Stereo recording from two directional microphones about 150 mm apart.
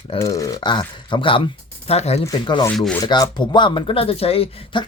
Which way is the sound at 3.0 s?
25° left (ahead or behind).